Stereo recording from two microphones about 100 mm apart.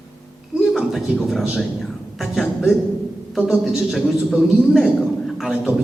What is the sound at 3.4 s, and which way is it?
A man's voice, 10° right (ahead or behind).